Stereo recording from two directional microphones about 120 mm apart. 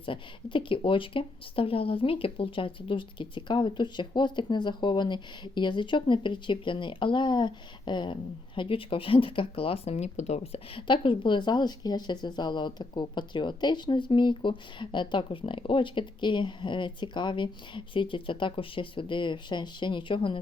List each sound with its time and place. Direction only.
0.0 s speech: 45° left (ahead or behind)